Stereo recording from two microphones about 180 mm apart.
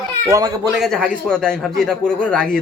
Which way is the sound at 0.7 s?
Centre (ahead or behind).